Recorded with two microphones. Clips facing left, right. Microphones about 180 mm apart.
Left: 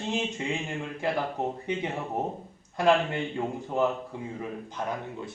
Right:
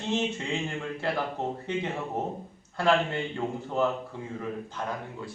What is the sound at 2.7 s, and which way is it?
A man's voice, 15° left (ahead or behind).